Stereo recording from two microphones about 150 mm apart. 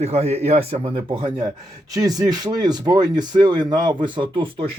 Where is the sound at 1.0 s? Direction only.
30° right (ahead or behind).